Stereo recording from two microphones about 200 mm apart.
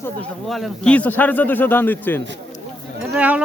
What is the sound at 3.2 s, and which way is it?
Speech, 5° right (ahead or behind).